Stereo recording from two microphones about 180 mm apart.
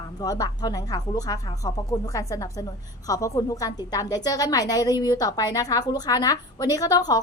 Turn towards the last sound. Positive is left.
turn(degrees=20)  # may be behind; listen again after turning